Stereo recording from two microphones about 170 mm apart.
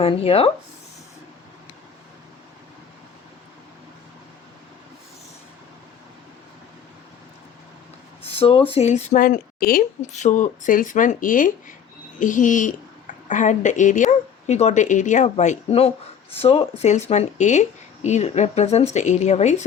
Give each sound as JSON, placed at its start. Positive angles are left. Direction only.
{"t": 0.0, "sound": "speech", "side_deg": 35}
{"t": 8.2, "sound": "speech", "side_deg": 35}
{"t": 10.1, "sound": "speech", "side_deg": 45}